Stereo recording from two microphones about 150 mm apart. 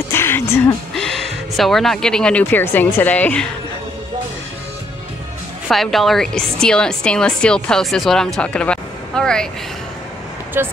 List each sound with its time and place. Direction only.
0.1 s music: 15° left (ahead or behind)
0.9 s speech: centre (ahead or behind)
5.7 s a woman's voice: centre (ahead or behind)
10.6 s speech: 15° right (ahead or behind)